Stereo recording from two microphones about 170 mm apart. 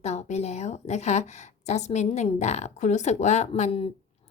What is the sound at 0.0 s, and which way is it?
A woman's voice, 40° left (ahead or behind).